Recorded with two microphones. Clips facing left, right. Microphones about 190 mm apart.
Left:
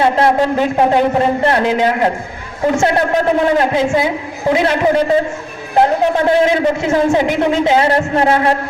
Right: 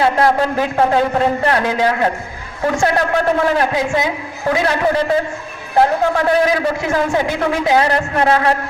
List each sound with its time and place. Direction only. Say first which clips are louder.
0.0 s a man's voice: left 2 dB; 20° left (ahead or behind)